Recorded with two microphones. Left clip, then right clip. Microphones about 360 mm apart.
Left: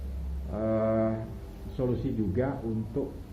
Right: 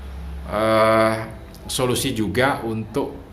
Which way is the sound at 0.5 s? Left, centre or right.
Right.